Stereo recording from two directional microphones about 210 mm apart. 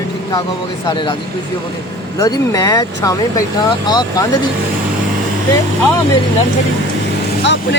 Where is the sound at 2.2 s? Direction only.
15° left (ahead or behind).